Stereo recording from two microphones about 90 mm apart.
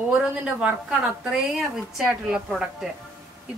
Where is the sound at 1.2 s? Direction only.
5° right (ahead or behind).